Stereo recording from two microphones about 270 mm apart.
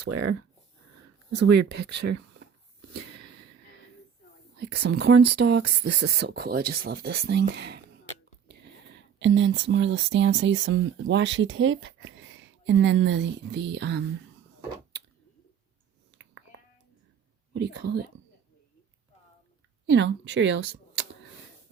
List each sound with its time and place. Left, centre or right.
0.1 s speech: right
1.4 s speech: right
4.5 s speech: right
5.2 s speech: right
5.8 s speech: right
17.5 s speech: right
19.9 s speech: right